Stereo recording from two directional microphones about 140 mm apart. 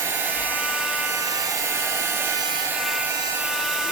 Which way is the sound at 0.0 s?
15° right (ahead or behind).